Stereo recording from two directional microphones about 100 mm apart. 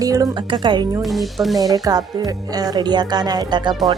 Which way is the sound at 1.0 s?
Centre (ahead or behind).